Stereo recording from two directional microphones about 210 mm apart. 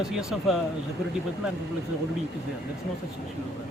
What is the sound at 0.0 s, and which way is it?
Speech, 5° right (ahead or behind).